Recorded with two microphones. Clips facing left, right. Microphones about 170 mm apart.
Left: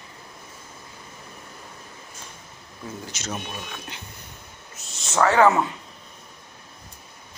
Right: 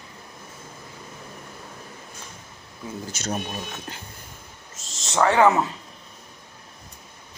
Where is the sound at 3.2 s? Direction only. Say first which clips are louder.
Right 4 dB; 40° right (ahead or behind).